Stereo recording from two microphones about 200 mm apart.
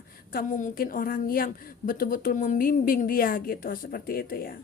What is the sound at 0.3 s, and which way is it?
A woman's voice, 45° left (ahead or behind).